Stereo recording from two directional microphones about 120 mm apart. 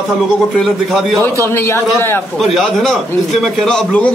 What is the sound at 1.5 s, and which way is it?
Speech, 20° left (ahead or behind).